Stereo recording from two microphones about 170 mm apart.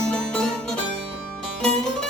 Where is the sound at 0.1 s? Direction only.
5° left (ahead or behind).